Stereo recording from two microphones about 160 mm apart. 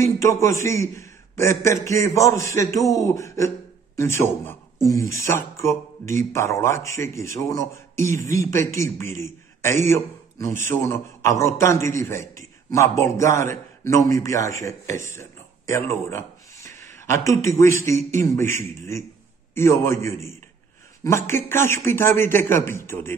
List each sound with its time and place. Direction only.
0.0 s a man's voice: 20° left (ahead or behind)